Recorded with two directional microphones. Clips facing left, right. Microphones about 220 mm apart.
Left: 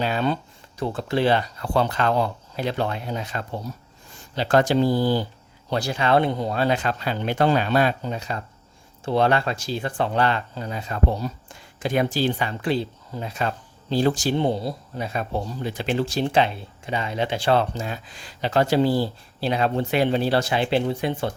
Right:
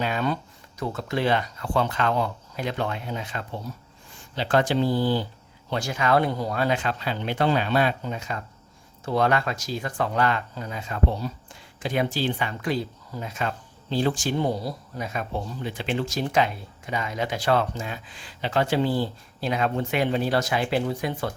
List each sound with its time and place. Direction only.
0.0 s speech: 30° left (ahead or behind)
14.3 s speech: 25° left (ahead or behind)